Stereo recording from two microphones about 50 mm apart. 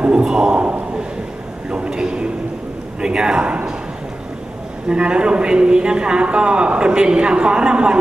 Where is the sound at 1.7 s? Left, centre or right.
Centre.